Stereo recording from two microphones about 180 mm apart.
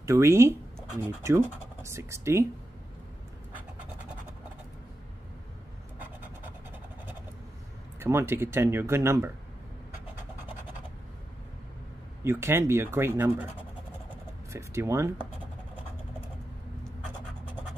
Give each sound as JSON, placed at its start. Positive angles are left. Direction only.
{"t": 0.0, "sound": "speech", "side_deg": -15}
{"t": 8.0, "sound": "speech", "side_deg": -15}
{"t": 12.2, "sound": "speech", "side_deg": -15}